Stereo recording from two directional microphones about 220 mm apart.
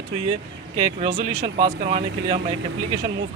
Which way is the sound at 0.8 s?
30° right (ahead or behind).